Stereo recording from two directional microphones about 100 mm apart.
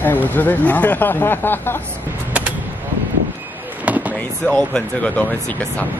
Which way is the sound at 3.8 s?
15° right (ahead or behind).